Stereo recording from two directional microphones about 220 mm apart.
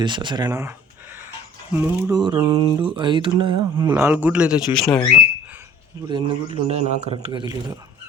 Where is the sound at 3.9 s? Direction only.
10° right (ahead or behind).